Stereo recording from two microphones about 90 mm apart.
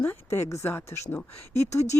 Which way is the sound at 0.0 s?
30° left (ahead or behind).